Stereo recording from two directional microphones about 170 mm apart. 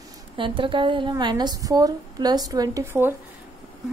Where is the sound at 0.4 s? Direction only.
30° right (ahead or behind).